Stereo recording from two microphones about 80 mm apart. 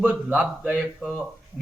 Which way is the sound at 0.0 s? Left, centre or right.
Centre.